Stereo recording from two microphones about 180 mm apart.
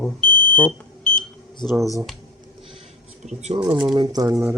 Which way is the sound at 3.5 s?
25° right (ahead or behind).